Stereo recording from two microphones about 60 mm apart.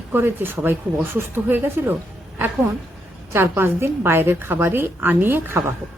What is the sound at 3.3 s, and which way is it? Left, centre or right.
A woman's voice, right.